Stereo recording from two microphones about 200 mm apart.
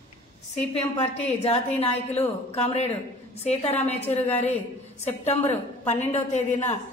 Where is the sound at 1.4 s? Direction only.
30° left (ahead or behind).